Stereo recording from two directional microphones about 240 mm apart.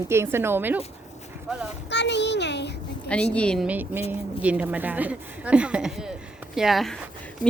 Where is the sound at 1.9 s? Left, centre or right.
Left.